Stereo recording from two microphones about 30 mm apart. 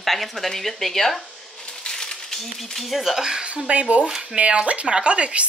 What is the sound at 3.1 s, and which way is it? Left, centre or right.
Speech, right.